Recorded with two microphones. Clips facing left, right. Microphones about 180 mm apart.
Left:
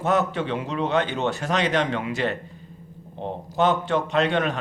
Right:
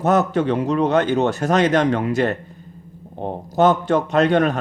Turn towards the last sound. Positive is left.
turn(degrees=-40)  # may be behind; listen again after turning